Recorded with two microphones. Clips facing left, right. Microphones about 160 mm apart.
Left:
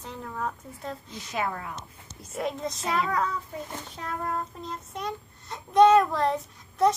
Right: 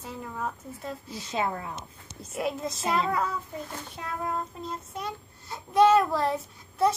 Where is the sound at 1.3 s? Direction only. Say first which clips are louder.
Right 1 dB; 25° right (ahead or behind).